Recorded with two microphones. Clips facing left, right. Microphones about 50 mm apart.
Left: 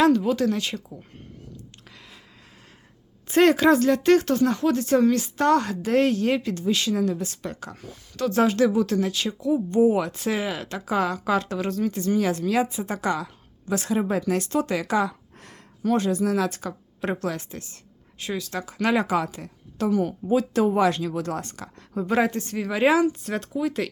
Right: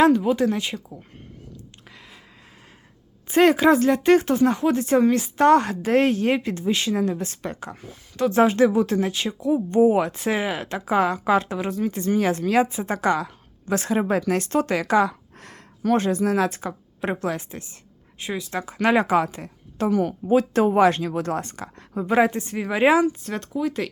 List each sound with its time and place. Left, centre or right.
0.2 s speech: centre
1.9 s a sound: centre
3.2 s speech: centre; by 7.6 s right
7.6 s speech: centre
11.9 s a woman's voice: right
14.1 s speech: right
15.4 s a sound: right
15.9 s a woman's voice: right
21.9 s speech: centre
23.0 s speech: centre